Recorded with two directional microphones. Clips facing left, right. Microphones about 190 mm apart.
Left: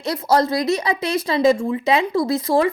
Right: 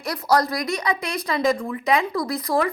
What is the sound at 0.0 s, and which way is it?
Speech, 25° left (ahead or behind).